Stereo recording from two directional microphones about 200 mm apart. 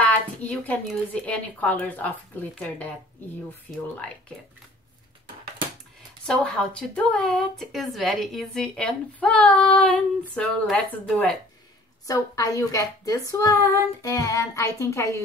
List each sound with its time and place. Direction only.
0.0 s a sound: 5° left (ahead or behind)
1.2 s a woman's voice: 5° left (ahead or behind)
6.2 s a woman's voice: 5° left (ahead or behind)
12.1 s a woman's voice: 15° left (ahead or behind)